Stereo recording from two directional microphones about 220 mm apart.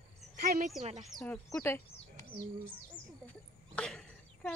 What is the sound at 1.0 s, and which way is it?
Speech, 5° left (ahead or behind).